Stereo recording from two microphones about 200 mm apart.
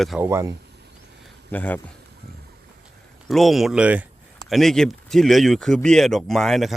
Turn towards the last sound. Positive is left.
turn(degrees=0)  # may be behind; listen again after turning